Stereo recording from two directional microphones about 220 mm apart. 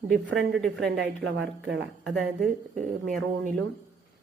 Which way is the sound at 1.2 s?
55° right (ahead or behind).